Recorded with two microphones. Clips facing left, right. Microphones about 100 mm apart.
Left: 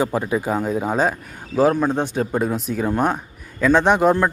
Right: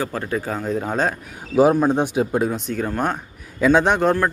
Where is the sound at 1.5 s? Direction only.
10° right (ahead or behind).